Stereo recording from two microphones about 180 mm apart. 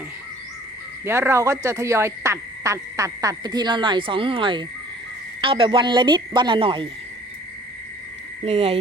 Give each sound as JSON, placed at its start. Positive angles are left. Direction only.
{"t": 1.0, "sound": "speech", "side_deg": -15}
{"t": 8.4, "sound": "speech", "side_deg": -35}